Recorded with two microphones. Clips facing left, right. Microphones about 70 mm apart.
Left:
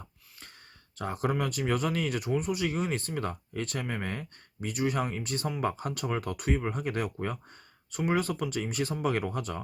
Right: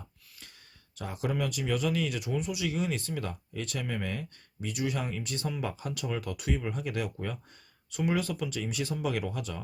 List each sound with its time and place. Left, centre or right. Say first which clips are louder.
0.9 s speech: left 3 dB; left